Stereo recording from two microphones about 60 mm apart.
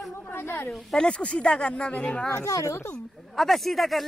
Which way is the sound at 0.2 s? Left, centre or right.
Left.